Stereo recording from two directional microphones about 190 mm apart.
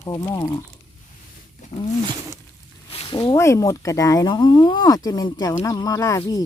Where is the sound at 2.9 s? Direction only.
30° left (ahead or behind).